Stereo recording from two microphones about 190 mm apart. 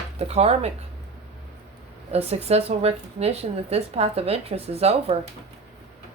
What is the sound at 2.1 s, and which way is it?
Speech, 35° right (ahead or behind).